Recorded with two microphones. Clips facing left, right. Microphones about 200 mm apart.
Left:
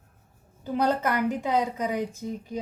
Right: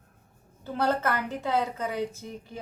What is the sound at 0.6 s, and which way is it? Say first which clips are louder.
A woman's voice: left 2 dB; 15° left (ahead or behind).